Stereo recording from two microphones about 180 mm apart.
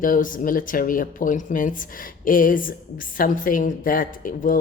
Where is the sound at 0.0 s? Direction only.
50° left (ahead or behind).